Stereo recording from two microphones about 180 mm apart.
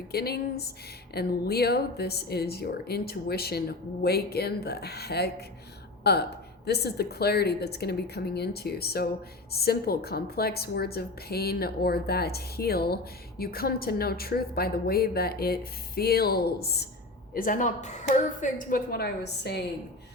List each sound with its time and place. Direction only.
0.1 s speech: 60° left (ahead or behind)
17.3 s a woman's voice: 50° left (ahead or behind); by 19.6 s 65° left (ahead or behind)